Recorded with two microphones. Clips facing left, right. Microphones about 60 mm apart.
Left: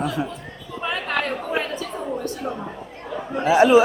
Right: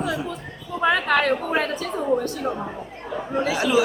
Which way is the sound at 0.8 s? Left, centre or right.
Right.